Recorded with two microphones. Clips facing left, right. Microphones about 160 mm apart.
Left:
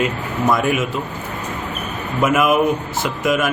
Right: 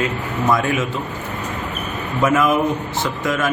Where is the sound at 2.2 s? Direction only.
10° left (ahead or behind).